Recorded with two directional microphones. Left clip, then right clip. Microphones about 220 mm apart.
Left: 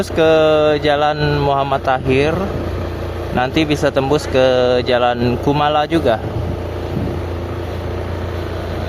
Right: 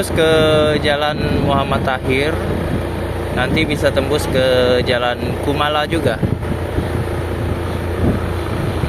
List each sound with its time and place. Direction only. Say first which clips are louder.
0.2 s speech: left 2 dB; 20° left (ahead or behind)
3.4 s speech: even; 25° left (ahead or behind)